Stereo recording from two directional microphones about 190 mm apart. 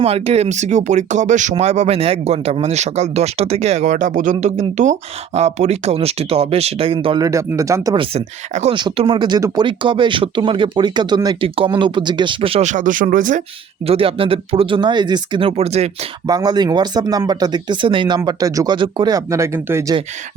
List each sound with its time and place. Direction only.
0.0 s speech: 30° right (ahead or behind)
7.3 s speech: 15° right (ahead or behind)
8.1 s speech: 35° right (ahead or behind)
13.8 s speech: 30° right (ahead or behind)
16.2 s speech: 20° right (ahead or behind)